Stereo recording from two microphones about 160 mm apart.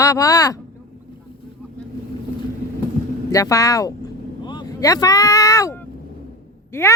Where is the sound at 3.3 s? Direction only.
20° left (ahead or behind).